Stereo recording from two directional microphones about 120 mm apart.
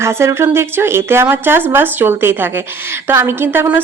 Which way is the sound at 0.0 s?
20° right (ahead or behind).